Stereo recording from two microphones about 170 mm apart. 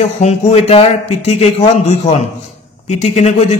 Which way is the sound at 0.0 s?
40° left (ahead or behind).